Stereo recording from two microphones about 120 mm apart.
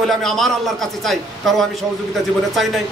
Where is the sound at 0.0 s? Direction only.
5° left (ahead or behind).